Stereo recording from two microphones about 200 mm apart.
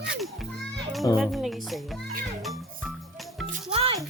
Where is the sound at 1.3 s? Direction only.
Centre (ahead or behind).